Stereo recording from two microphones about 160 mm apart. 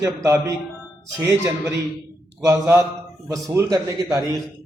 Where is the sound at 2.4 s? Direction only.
20° right (ahead or behind).